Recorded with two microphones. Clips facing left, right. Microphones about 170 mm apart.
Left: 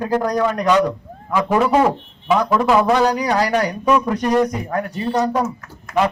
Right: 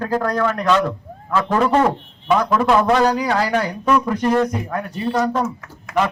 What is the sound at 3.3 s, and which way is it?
A man's voice, 10° left (ahead or behind).